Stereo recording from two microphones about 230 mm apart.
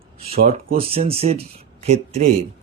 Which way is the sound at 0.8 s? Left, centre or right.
Right.